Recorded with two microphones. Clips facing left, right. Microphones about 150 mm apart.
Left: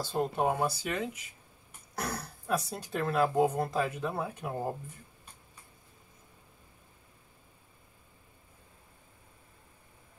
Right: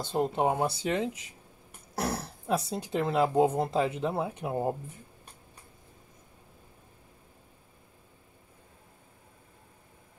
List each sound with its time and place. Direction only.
0.0 s speech: 20° right (ahead or behind)